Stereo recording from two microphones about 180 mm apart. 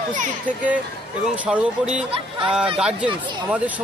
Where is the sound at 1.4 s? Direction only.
5° right (ahead or behind).